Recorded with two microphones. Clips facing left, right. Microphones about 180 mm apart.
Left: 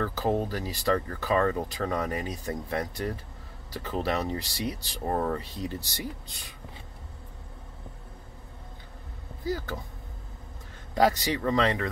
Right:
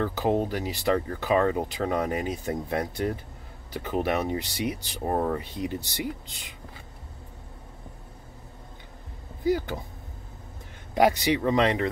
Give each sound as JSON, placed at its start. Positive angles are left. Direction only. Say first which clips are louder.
{"t": 0.0, "sound": "speech", "louder": "right 2 dB", "side_deg": -20}
{"t": 9.4, "sound": "speech", "louder": "right 6 dB", "side_deg": -20}
{"t": 11.0, "sound": "speech", "louder": "right 3 dB", "side_deg": -15}